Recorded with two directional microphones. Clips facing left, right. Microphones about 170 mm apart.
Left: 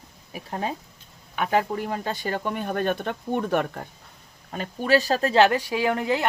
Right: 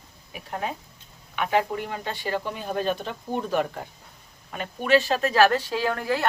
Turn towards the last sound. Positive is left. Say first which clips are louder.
# left 2 dB
turn(degrees=20)  # may be behind; listen again after turning